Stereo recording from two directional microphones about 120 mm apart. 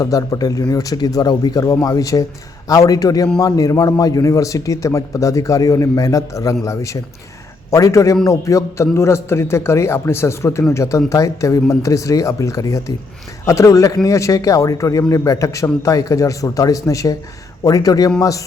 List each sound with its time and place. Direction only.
0.0 s a man's voice: 30° left (ahead or behind)